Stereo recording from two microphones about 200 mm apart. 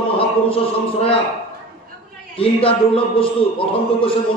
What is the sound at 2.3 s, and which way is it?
Music, 30° left (ahead or behind).